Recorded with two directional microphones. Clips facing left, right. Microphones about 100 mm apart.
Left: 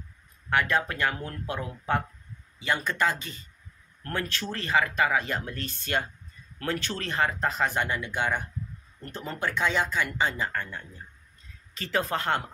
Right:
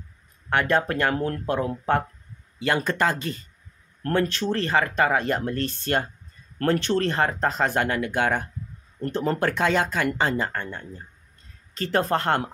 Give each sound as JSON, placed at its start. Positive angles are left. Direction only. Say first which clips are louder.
{"t": 0.5, "sound": "speech", "louder": "right 4 dB", "side_deg": -35}
{"t": 4.2, "sound": "speech", "louder": "right 7 dB", "side_deg": -20}
{"t": 4.5, "sound": "speech", "louder": "right 4 dB", "side_deg": -40}
{"t": 7.1, "sound": "speech", "louder": "right 4 dB", "side_deg": -35}
{"t": 7.7, "sound": "speech", "louder": "right 5 dB", "side_deg": -55}
{"t": 10.1, "sound": "speech", "louder": "right 4 dB", "side_deg": -40}
{"t": 11.8, "sound": "speech", "louder": "right 5 dB", "side_deg": -45}